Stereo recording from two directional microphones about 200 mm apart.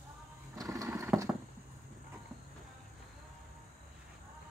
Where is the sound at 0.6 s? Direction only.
15° right (ahead or behind).